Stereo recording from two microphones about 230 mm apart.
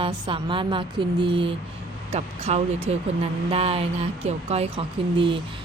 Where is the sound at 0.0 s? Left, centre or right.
Right.